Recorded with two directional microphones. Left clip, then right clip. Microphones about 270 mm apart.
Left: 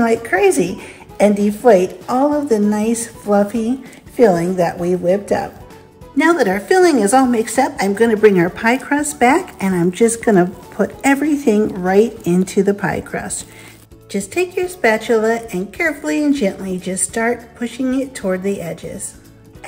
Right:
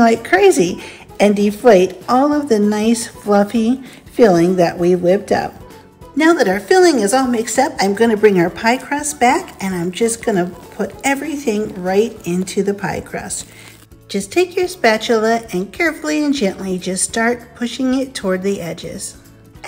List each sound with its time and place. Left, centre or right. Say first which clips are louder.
0.0 s a woman's voice: right 3 dB; centre
6.1 s a woman's voice: right 1 dB; centre